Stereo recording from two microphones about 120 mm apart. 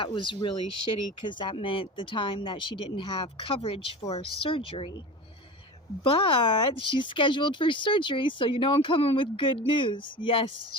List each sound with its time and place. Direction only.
0.0 s speech: 45° left (ahead or behind)
6.0 s speech: 45° left (ahead or behind)